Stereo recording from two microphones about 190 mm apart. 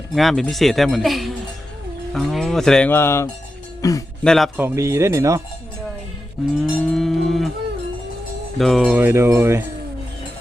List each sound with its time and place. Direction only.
0.1 s speech: centre (ahead or behind); by 4.0 s 20° left (ahead or behind)
4.2 s speech: centre (ahead or behind)
4.6 s speech: 15° right (ahead or behind)
6.6 s cattle: centre (ahead or behind)
8.5 s speech: centre (ahead or behind)